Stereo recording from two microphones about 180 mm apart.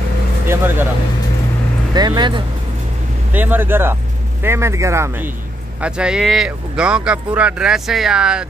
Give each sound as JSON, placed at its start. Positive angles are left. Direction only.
{"t": 0.5, "sound": "speech", "side_deg": -10}
{"t": 2.0, "sound": "speech", "side_deg": -25}
{"t": 3.3, "sound": "speech", "side_deg": -10}